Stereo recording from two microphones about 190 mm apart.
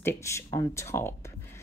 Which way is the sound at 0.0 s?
15° left (ahead or behind).